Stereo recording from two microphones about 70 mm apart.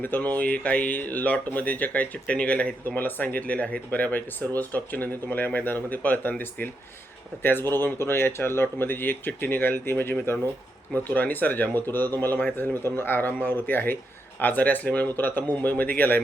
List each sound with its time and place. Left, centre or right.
0.0 s speech: left
7.9 s speech: left